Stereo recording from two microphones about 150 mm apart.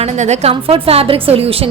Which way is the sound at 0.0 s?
45° right (ahead or behind).